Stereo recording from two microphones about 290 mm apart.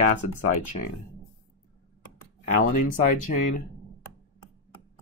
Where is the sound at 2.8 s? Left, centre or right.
Left.